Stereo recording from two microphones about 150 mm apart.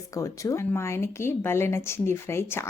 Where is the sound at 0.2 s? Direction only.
20° left (ahead or behind).